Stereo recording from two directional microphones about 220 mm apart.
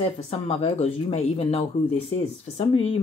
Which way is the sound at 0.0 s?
25° left (ahead or behind).